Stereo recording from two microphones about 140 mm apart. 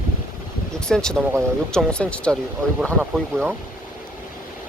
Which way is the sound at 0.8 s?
5° left (ahead or behind).